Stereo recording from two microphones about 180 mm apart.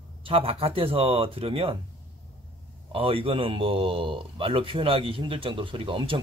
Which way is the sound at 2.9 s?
30° right (ahead or behind).